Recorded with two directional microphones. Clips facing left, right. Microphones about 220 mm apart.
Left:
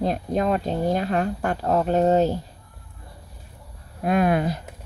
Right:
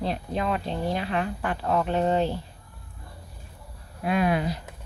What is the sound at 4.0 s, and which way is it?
Speech, 45° left (ahead or behind).